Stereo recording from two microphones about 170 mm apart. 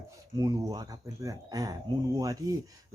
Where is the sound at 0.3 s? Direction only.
20° right (ahead or behind).